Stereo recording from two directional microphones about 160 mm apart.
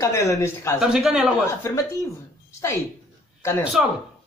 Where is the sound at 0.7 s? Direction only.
5° right (ahead or behind).